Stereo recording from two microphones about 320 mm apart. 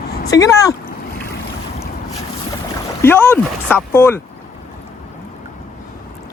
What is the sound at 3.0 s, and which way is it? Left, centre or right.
Speech, centre.